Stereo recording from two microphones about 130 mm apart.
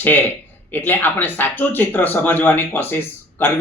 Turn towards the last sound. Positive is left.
turn(degrees=15)  # may be behind; listen again after turning